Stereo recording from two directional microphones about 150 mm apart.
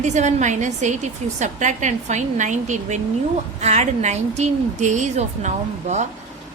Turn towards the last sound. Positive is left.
turn(degrees=-50)  # may be behind; listen again after turning